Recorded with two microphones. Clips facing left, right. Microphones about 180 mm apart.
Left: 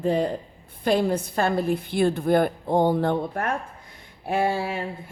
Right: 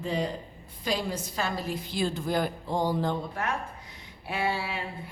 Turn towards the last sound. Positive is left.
turn(degrees=45)  # may be behind; listen again after turning